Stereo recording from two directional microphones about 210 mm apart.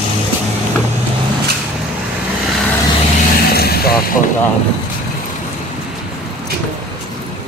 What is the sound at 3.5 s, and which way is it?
Vehicle, 50° left (ahead or behind).